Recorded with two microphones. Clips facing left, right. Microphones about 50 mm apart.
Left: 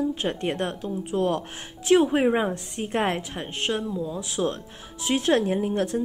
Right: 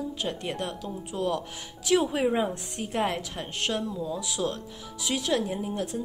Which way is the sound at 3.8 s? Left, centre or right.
Centre.